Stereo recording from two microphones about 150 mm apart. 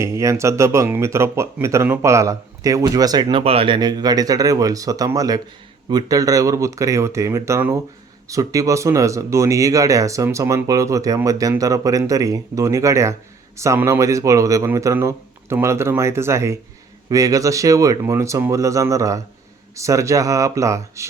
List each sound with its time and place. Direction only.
0.0 s speech: 20° right (ahead or behind)